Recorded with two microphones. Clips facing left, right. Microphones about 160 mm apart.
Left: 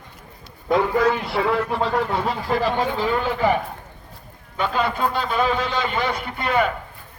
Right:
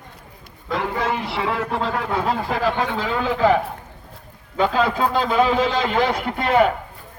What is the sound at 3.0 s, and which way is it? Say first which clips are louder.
A man's voice: right 3 dB; 90° right.